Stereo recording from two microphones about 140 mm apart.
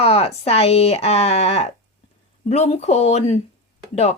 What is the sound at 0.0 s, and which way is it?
Speech, 45° left (ahead or behind).